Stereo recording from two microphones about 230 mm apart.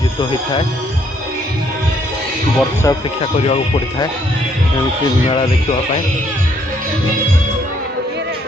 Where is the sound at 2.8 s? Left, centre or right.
Left.